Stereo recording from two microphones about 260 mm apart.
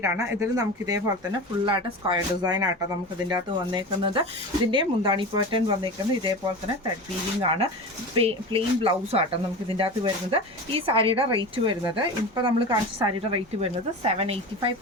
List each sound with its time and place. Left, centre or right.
0.0 s speech: centre
8.2 s speech: right